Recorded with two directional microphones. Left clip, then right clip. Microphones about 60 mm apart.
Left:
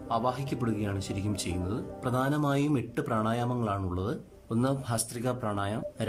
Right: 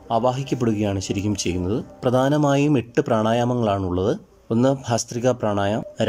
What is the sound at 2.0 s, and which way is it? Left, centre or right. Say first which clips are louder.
Speech: right 11 dB; centre.